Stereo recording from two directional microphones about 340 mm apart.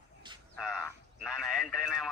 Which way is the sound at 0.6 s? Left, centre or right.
Centre.